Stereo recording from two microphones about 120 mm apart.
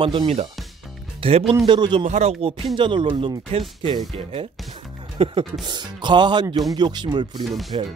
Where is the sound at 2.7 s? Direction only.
45° right (ahead or behind).